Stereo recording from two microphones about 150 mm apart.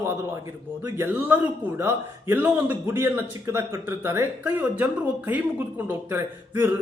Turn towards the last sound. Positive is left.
turn(degrees=-15)  # may be behind; listen again after turning